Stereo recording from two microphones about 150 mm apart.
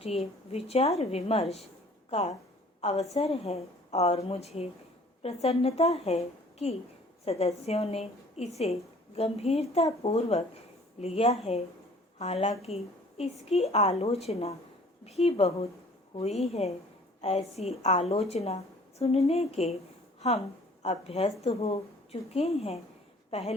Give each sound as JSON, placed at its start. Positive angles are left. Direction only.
{"t": 0.0, "sound": "a woman's voice", "side_deg": 40}